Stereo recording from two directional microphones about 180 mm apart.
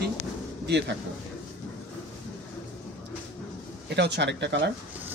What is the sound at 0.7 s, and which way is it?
Speech, 70° right (ahead or behind).